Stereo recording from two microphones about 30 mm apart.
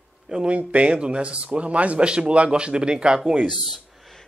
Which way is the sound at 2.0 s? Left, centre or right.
Right.